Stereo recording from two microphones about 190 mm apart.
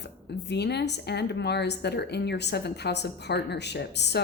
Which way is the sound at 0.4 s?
60° left (ahead or behind).